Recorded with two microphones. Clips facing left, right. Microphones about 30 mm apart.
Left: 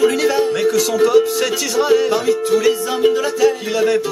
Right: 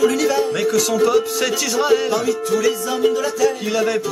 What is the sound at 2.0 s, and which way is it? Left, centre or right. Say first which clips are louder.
Music: left 3 dB; centre.